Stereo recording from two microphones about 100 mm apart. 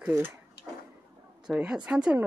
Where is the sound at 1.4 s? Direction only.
10° right (ahead or behind).